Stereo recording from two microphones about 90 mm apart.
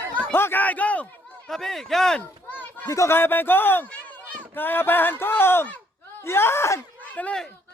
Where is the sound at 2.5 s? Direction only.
20° left (ahead or behind).